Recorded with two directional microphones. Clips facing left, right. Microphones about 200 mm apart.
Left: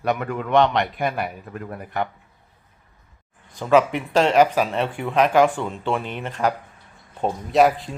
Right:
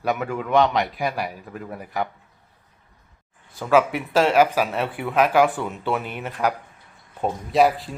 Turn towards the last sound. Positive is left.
turn(degrees=0)  # may be behind; listen again after turning